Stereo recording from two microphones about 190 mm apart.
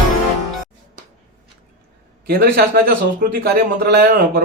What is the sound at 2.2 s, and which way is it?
Speech, 50° right (ahead or behind).